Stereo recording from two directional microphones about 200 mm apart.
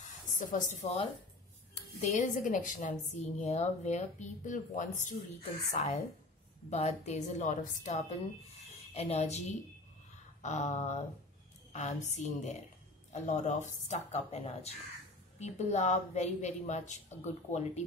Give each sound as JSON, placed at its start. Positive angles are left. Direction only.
{"t": 0.4, "sound": "speech", "side_deg": 40}
{"t": 2.0, "sound": "speech", "side_deg": 35}